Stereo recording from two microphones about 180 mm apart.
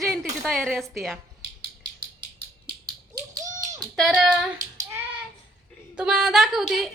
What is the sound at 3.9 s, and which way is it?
Speech, centre (ahead or behind).